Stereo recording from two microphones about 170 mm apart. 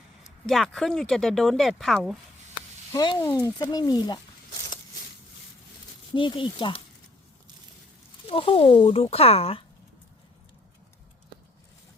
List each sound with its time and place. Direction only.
0.4 s speech: centre (ahead or behind)
2.9 s speech: 25° left (ahead or behind)
6.1 s speech: 30° left (ahead or behind)
8.3 s speech: 35° left (ahead or behind)